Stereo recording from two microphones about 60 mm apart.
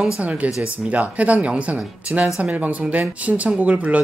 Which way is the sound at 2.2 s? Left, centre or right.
Centre.